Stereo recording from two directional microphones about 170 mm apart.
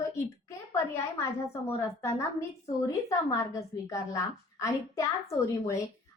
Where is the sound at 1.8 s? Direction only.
15° left (ahead or behind).